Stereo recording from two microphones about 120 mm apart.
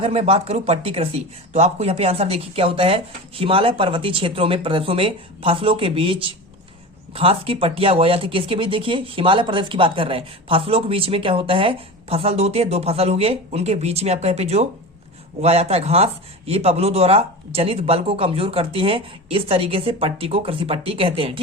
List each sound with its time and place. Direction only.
0.0 s a man's voice: 55° right (ahead or behind)